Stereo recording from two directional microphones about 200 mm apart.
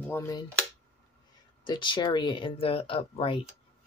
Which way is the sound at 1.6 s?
25° left (ahead or behind).